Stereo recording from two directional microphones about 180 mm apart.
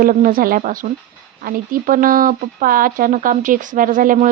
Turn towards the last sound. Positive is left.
turn(degrees=-45)  # may be behind; listen again after turning